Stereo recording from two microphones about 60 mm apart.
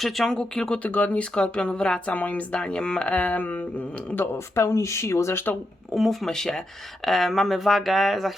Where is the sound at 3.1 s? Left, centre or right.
Left.